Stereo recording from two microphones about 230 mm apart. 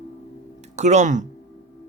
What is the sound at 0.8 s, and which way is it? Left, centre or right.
Speech, right.